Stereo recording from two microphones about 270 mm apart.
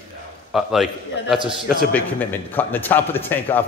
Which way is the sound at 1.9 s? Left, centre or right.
Centre.